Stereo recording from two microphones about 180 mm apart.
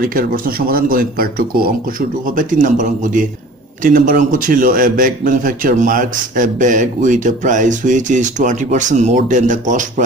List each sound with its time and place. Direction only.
0.0 s speech: 55° right (ahead or behind)